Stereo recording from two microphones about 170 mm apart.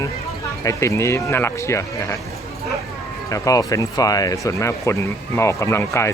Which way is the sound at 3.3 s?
20° left (ahead or behind).